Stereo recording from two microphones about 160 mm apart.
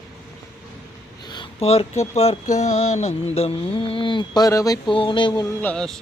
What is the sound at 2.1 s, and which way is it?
Mantra, 40° left (ahead or behind).